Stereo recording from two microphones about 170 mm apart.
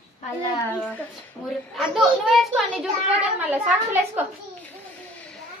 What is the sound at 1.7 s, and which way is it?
A woman's voice, centre (ahead or behind).